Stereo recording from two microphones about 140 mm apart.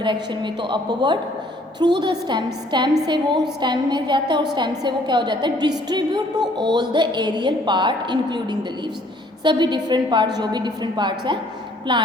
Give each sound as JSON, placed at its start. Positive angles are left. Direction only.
{"t": 0.0, "sound": "a woman's voice", "side_deg": -35}